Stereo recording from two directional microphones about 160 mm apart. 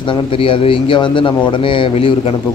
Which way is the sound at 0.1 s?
35° left (ahead or behind).